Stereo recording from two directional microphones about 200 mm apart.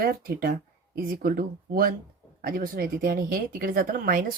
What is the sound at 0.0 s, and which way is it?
A woman's voice, 45° right (ahead or behind).